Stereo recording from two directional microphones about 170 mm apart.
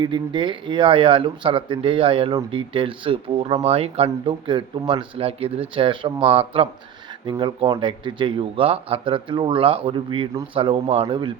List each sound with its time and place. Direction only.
0.0 s speech: 30° right (ahead or behind)